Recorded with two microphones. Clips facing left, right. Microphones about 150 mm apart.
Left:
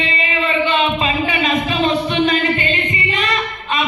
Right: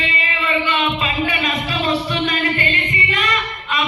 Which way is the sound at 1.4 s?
25° left (ahead or behind).